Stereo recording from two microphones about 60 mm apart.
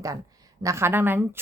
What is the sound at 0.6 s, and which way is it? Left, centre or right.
Speech, right.